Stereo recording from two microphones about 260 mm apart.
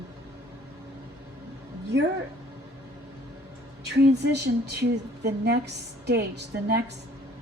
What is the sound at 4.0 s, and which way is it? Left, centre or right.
A woman's voice, right.